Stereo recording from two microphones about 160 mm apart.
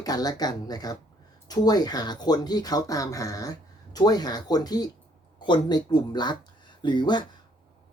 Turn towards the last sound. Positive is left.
turn(degrees=30)  # may be behind; listen again after turning